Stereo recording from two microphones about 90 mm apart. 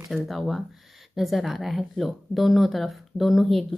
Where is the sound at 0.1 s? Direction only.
Centre (ahead or behind).